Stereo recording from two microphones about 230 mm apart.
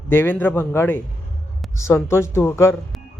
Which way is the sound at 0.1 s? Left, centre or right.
Centre.